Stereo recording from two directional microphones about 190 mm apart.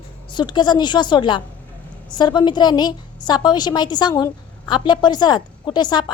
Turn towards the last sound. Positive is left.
turn(degrees=25)  # may be behind; listen again after turning